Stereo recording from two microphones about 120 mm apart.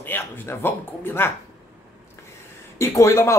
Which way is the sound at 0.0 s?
15° left (ahead or behind).